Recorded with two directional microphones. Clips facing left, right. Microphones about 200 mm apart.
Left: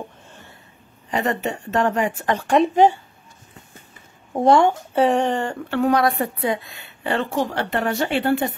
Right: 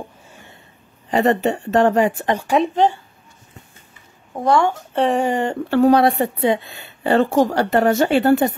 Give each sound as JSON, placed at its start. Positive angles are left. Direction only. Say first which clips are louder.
{"t": 1.1, "sound": "a woman's voice", "louder": "right 6 dB", "side_deg": -35}
{"t": 2.2, "sound": "speech", "louder": "even", "side_deg": -10}
{"t": 4.3, "sound": "speech", "louder": "left 2 dB", "side_deg": 25}
{"t": 4.9, "sound": "speech", "louder": "right 1 dB", "side_deg": 0}
{"t": 5.3, "sound": "speech", "louder": "right 3 dB", "side_deg": -15}
{"t": 5.7, "sound": "a woman's voice", "louder": "right 5 dB", "side_deg": -35}